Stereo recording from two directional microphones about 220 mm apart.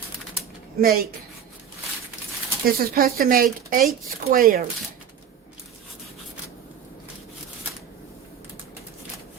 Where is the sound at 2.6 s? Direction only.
45° right (ahead or behind).